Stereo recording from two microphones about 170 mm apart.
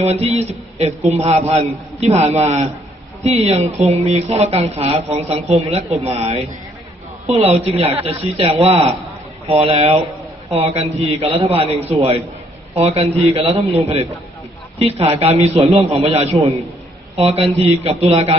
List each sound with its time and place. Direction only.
0.0 s a man's voice: 40° right (ahead or behind)